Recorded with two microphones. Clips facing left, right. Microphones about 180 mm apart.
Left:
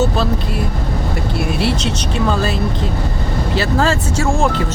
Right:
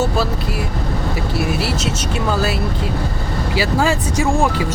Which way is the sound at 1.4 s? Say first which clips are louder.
Left 3 dB; centre (ahead or behind).